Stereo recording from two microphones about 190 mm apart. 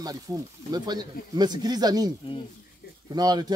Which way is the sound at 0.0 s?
20° right (ahead or behind).